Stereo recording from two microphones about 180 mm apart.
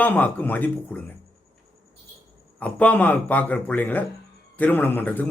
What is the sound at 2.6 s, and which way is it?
A man's voice, 10° left (ahead or behind).